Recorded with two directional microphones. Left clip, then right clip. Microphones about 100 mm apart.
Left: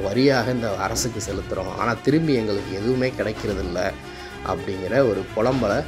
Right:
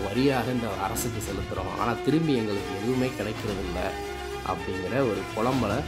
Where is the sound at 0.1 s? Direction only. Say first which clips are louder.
Left 6 dB; 15° left (ahead or behind).